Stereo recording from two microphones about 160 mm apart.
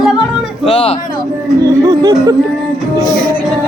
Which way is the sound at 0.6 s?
40° left (ahead or behind).